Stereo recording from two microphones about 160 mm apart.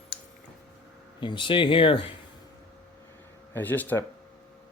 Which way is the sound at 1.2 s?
30° left (ahead or behind).